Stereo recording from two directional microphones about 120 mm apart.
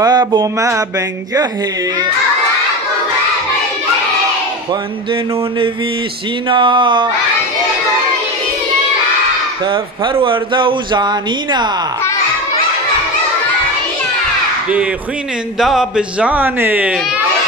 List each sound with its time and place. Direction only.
0.0 s speech: 35° right (ahead or behind)
6.5 s speech: 40° right (ahead or behind)
10.2 s speech: 45° right (ahead or behind)
15.6 s speech: 5° right (ahead or behind)